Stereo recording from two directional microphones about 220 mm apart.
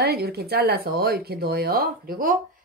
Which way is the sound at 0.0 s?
45° right (ahead or behind).